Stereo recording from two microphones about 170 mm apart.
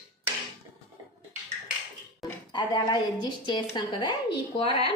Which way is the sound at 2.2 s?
25° left (ahead or behind).